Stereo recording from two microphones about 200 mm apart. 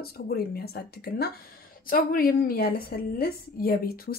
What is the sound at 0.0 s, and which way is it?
A woman's voice, 50° left (ahead or behind).